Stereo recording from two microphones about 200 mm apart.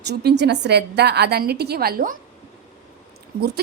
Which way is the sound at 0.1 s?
55° right (ahead or behind).